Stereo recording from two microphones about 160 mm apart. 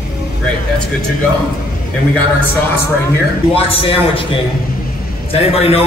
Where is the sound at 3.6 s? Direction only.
35° left (ahead or behind).